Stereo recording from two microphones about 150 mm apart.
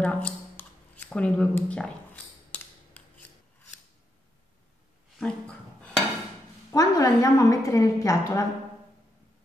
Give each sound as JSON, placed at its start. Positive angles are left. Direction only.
{"t": 0.0, "sound": "a sound", "side_deg": 10}
{"t": 5.2, "sound": "dishes", "side_deg": 5}
{"t": 6.7, "sound": "a woman's voice", "side_deg": 25}